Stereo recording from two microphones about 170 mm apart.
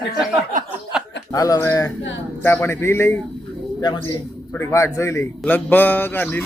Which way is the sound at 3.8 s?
25° left (ahead or behind).